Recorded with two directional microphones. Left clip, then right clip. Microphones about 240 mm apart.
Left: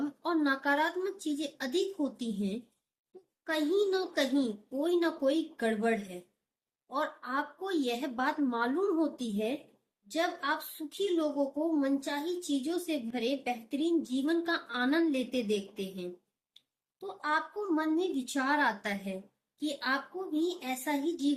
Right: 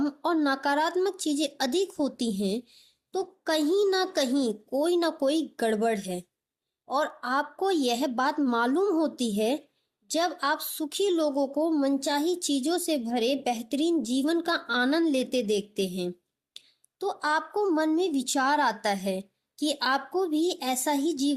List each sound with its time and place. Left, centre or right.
0.2 s a woman's voice: right